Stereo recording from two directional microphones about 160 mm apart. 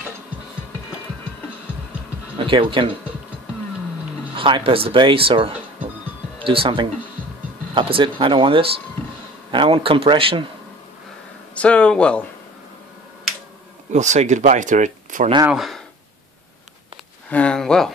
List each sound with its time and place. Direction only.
2.3 s speech: 30° right (ahead or behind)
4.4 s speech: 30° right (ahead or behind)
11.5 s speech: 5° left (ahead or behind)
13.9 s speech: 45° right (ahead or behind)
15.5 s speech: centre (ahead or behind)
16.9 s speech: 5° left (ahead or behind)